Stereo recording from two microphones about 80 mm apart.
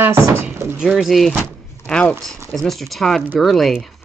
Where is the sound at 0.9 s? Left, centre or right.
Centre.